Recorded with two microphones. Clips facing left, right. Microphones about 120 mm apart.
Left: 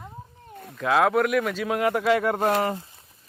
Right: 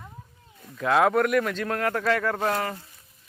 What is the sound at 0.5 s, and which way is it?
Cat, 60° left (ahead or behind).